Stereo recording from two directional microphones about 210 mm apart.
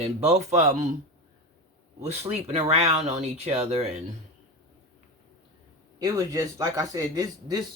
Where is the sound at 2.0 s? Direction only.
30° right (ahead or behind).